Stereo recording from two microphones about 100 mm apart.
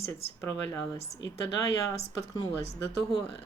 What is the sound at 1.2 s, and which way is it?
Speech, 35° left (ahead or behind).